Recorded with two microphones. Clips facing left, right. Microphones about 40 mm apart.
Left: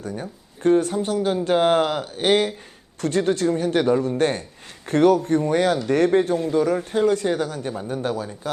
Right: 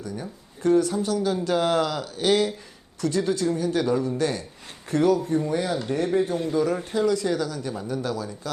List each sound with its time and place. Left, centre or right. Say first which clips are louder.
0.0 s speech: left 3 dB; left